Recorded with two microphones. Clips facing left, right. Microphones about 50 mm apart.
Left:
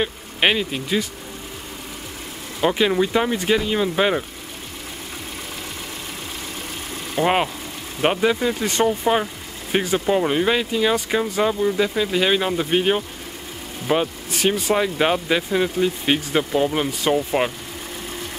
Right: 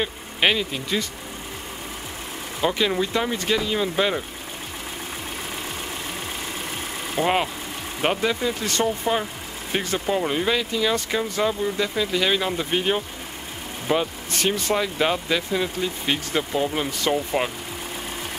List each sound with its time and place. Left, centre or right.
0.0 s speech: centre
2.6 s speech: centre
7.2 s speech: centre
8.0 s speech: centre
14.8 s speech: centre